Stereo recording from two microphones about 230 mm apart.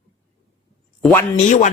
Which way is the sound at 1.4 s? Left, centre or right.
Left.